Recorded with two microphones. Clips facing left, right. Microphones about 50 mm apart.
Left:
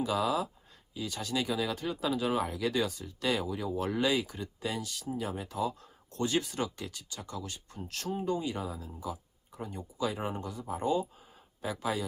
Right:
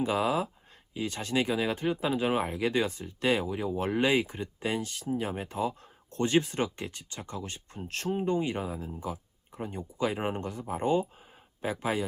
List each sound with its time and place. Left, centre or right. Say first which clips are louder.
0.0 s speech: right 2 dB; right